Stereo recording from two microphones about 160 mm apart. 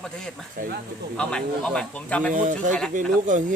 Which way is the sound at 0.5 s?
55° right (ahead or behind).